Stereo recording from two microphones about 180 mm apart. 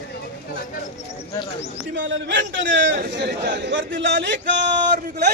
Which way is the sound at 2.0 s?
85° right.